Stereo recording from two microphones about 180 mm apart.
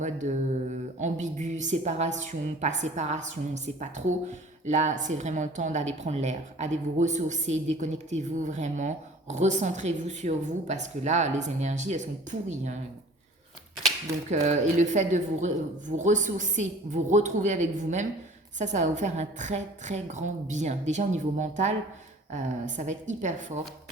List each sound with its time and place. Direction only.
0.0 s speech: 40° right (ahead or behind)
14.3 s a woman's voice: 40° right (ahead or behind)